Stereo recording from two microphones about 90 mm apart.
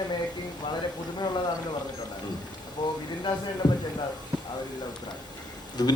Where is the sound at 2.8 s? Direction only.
50° left (ahead or behind).